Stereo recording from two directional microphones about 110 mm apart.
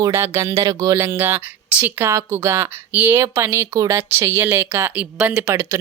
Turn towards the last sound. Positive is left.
turn(degrees=-25)  # may be behind; listen again after turning